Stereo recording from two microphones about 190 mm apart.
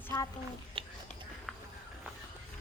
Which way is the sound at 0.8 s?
30° right (ahead or behind).